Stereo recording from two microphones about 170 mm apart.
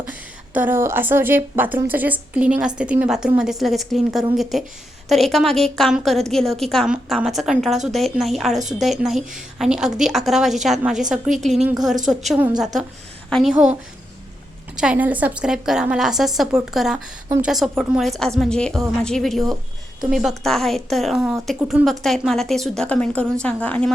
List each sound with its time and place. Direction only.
0.0 s a woman's voice: 10° right (ahead or behind)
14.8 s a woman's voice: 10° right (ahead or behind); by 23.9 s 10° left (ahead or behind)